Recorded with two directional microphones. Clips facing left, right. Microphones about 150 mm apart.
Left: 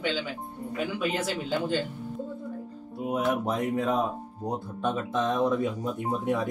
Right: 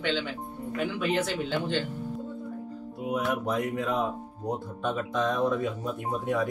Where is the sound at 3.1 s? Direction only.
25° left (ahead or behind).